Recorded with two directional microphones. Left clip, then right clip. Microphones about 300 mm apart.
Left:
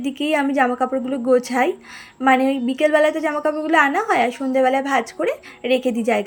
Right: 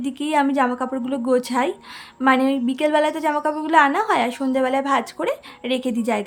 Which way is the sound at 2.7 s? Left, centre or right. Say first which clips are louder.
Left 5 dB; centre.